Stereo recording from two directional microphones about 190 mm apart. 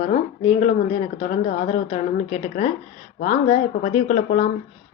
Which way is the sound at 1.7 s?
35° left (ahead or behind).